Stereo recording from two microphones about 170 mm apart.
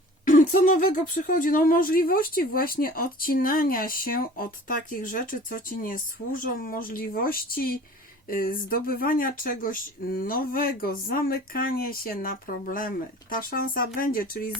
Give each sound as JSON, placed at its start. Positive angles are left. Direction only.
{"t": 0.3, "sound": "speech", "side_deg": 50}